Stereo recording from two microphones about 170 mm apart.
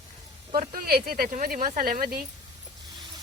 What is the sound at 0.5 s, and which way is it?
Speech, 55° right (ahead or behind).